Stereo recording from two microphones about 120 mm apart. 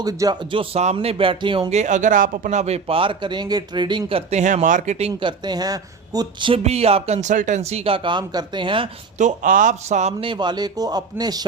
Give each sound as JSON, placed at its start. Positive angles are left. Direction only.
{"t": 0.0, "sound": "speech", "side_deg": -30}
{"t": 0.5, "sound": "speech", "side_deg": -50}
{"t": 0.9, "sound": "speech", "side_deg": -45}
{"t": 1.7, "sound": "speech", "side_deg": -85}
{"t": 4.3, "sound": "speech", "side_deg": -75}
{"t": 5.4, "sound": "speech", "side_deg": -35}
{"t": 6.5, "sound": "speech", "side_deg": -60}
{"t": 9.1, "sound": "speech", "side_deg": -90}
{"t": 10.2, "sound": "speech", "side_deg": -40}